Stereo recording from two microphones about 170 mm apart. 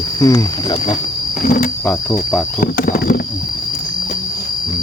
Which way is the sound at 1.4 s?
55° left (ahead or behind).